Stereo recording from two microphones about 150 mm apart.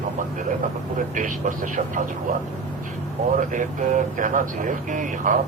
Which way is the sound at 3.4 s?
60° right (ahead or behind).